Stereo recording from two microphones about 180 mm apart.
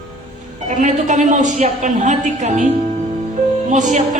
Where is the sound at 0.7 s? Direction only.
45° right (ahead or behind).